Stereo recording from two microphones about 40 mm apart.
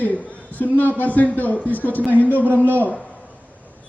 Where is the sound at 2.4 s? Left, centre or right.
Right.